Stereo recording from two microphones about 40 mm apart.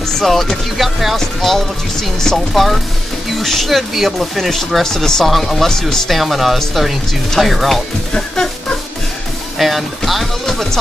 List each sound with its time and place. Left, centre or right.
0.2 s speech: centre
6.0 s speech: centre
8.1 s music: centre
9.6 s speech: centre
10.4 s speech: centre